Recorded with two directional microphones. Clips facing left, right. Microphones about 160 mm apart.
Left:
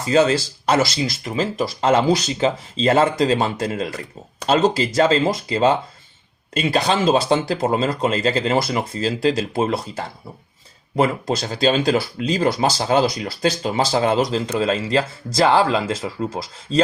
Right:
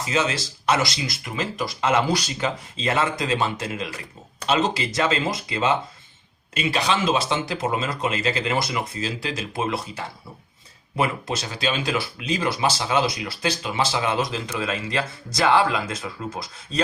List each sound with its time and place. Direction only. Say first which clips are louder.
0.0 s speech: left 8 dB; 35° left (ahead or behind)